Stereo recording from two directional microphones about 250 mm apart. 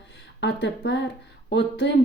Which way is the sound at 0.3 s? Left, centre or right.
Left.